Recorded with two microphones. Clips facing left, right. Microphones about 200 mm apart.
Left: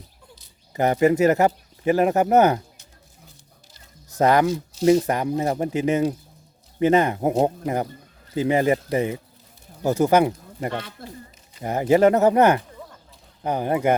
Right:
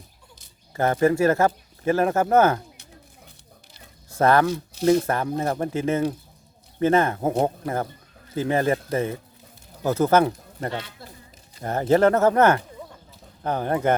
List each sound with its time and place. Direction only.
0.7 s speech: 15° left (ahead or behind)
4.2 s speech: 15° left (ahead or behind)